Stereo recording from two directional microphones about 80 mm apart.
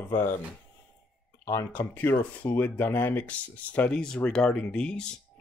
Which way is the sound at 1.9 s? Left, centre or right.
Left.